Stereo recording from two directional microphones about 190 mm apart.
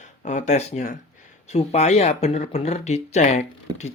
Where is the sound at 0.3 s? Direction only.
40° left (ahead or behind).